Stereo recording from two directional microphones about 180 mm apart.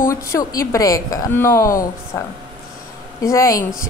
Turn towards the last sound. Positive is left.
turn(degrees=20)  # may be behind; listen again after turning